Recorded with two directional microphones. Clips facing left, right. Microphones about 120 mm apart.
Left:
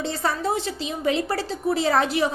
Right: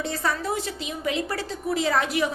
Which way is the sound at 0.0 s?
30° left (ahead or behind).